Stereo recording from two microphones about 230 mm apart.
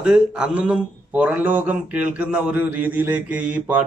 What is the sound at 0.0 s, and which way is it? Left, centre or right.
Speech, centre.